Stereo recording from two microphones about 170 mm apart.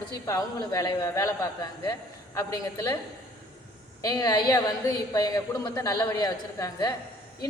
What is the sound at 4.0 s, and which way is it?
A woman's voice, 20° left (ahead or behind).